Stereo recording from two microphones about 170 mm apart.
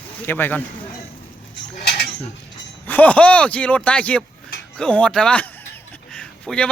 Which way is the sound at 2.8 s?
10° left (ahead or behind).